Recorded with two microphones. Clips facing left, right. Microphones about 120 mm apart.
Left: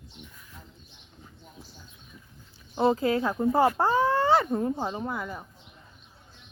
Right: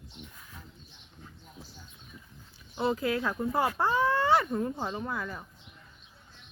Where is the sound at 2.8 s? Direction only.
40° left (ahead or behind); by 5.5 s 20° left (ahead or behind).